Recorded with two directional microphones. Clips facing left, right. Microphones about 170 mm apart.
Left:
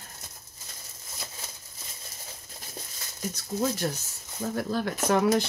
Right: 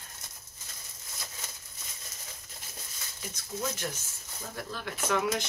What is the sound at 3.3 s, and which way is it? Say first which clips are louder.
Speech: left 7 dB; 35° left (ahead or behind).